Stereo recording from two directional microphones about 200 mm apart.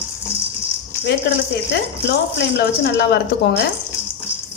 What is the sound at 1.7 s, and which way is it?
Speech, 55° left (ahead or behind).